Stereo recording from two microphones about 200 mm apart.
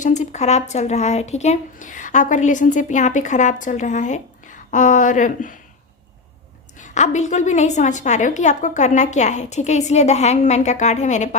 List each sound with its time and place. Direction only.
0.0 s speech: 35° left (ahead or behind)
6.7 s speech: 35° left (ahead or behind)